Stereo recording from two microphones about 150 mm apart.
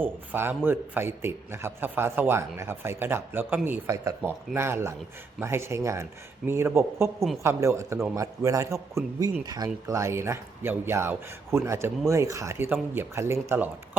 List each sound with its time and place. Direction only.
0.0 s a man's voice: 15° right (ahead or behind)